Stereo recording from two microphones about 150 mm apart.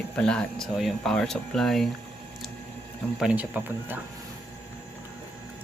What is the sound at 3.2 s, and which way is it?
Speech, 10° right (ahead or behind).